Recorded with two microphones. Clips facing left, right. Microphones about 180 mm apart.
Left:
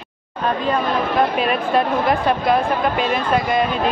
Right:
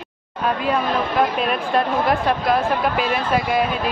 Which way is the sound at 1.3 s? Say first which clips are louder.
Left 2 dB; centre (ahead or behind).